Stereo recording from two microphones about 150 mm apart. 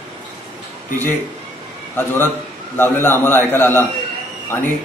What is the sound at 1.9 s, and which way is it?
A man's voice, 15° left (ahead or behind).